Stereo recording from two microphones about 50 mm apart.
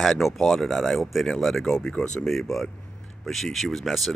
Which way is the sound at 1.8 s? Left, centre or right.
Left.